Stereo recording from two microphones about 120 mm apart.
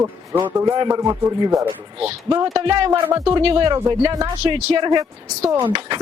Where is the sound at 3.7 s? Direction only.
25° right (ahead or behind).